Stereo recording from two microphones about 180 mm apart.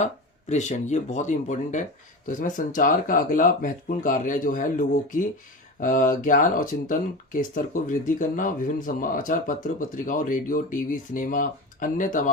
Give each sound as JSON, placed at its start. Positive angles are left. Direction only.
{"t": 0.0, "sound": "speech", "side_deg": 40}